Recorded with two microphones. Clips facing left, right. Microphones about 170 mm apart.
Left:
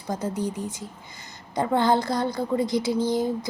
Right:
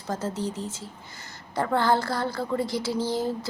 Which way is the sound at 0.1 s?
15° left (ahead or behind).